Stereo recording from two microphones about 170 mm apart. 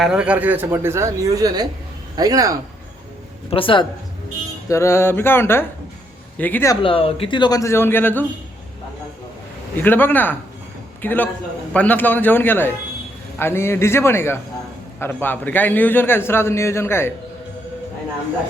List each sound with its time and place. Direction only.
0.0 s a woman's voice: 5° right (ahead or behind)
3.5 s speech: 30° left (ahead or behind)
4.7 s a man's voice: 15° left (ahead or behind)
6.8 s speech: 35° left (ahead or behind); by 8.2 s 10° left (ahead or behind)
9.8 s a man's voice: 10° left (ahead or behind)